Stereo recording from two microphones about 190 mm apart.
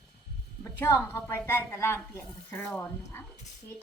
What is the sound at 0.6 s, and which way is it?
A woman's voice, 15° left (ahead or behind).